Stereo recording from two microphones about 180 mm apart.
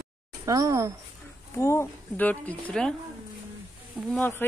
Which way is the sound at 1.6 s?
15° left (ahead or behind).